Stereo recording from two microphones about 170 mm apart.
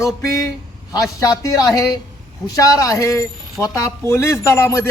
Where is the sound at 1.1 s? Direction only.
20° left (ahead or behind).